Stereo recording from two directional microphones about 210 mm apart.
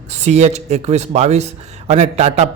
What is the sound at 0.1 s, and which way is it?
A man's voice, 30° right (ahead or behind).